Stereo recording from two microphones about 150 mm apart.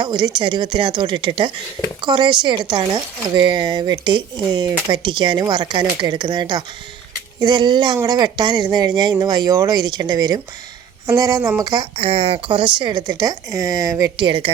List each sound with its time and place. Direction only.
0.0 s speech: 30° right (ahead or behind)
11.9 s speech: 40° right (ahead or behind)